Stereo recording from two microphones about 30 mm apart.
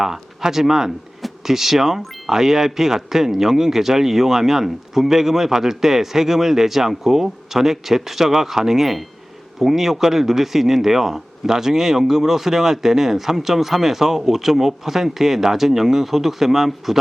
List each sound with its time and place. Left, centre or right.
0.0 s speech: centre